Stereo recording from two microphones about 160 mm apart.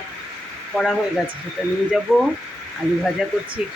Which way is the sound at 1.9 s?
Centre (ahead or behind).